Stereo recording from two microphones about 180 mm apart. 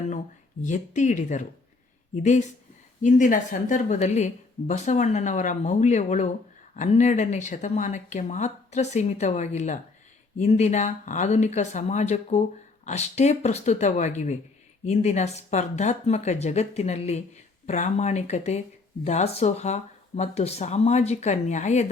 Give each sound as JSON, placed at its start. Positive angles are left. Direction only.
{"t": 0.6, "sound": "speech", "side_deg": 45}
{"t": 3.0, "sound": "speech", "side_deg": 45}